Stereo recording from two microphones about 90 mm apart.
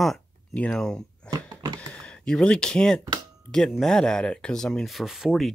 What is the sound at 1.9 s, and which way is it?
Speech, 10° left (ahead or behind).